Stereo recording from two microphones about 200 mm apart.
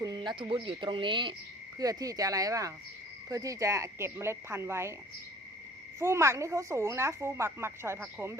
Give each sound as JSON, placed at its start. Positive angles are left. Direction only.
{"t": 0.0, "sound": "speech", "side_deg": -20}
{"t": 6.0, "sound": "speech", "side_deg": -15}